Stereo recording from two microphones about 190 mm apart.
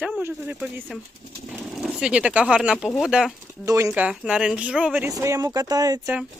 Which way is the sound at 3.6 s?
15° right (ahead or behind).